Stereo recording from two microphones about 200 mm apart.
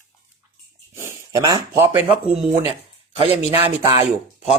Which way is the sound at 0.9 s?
15° right (ahead or behind).